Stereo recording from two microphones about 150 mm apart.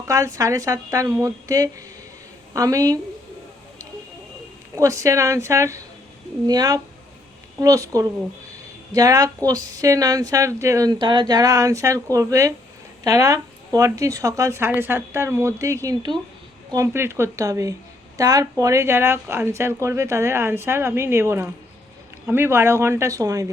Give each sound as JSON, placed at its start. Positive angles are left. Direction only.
{"t": 0.1, "sound": "speech", "side_deg": -25}
{"t": 4.8, "sound": "speech", "side_deg": -20}